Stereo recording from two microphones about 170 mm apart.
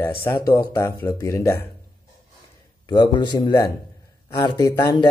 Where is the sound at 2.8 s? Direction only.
25° left (ahead or behind).